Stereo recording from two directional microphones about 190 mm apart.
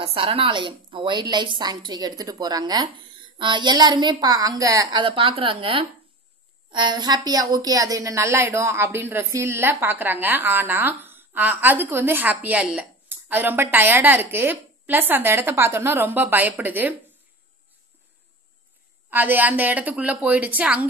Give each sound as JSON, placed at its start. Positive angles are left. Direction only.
{"t": 0.0, "sound": "a woman's voice", "side_deg": -30}
{"t": 19.0, "sound": "a woman's voice", "side_deg": -10}